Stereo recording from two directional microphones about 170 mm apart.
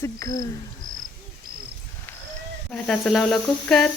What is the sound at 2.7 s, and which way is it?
Speech, 5° left (ahead or behind).